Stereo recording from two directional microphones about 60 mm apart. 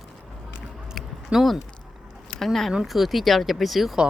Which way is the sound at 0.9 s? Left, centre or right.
Centre.